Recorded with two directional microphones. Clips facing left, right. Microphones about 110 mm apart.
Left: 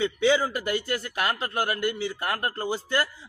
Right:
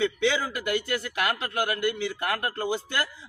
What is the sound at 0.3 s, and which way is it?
A man's voice, 35° left (ahead or behind).